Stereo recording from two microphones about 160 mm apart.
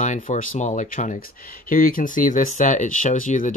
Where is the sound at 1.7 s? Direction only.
60° left (ahead or behind).